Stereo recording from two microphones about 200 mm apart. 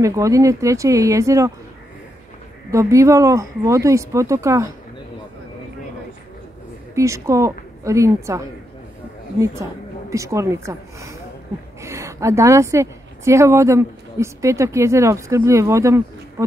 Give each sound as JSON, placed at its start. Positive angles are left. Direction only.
{"t": 0.0, "sound": "speech", "side_deg": -15}
{"t": 2.7, "sound": "speech", "side_deg": -15}
{"t": 7.0, "sound": "a woman's voice", "side_deg": -15}